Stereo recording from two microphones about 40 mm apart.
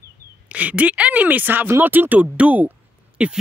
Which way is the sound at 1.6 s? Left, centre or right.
Right.